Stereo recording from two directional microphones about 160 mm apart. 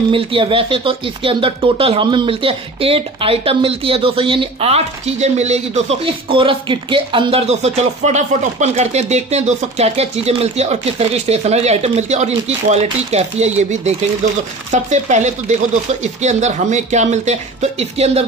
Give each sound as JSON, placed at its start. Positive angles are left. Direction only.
{"t": 0.1, "sound": "speech", "side_deg": -35}